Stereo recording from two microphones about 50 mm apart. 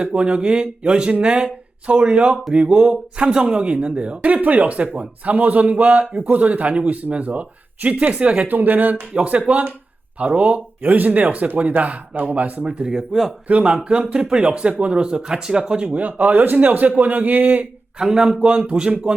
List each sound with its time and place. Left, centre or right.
0.0 s speech: right
8.4 s a man's voice: right; by 13.3 s centre
13.5 s a man's voice: right
18.0 s a man's voice: centre